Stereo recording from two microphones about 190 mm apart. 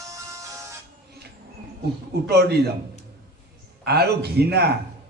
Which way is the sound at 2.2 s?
60° right (ahead or behind).